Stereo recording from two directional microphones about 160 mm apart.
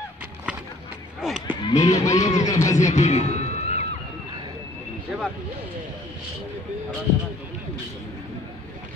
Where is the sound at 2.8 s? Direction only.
50° left (ahead or behind).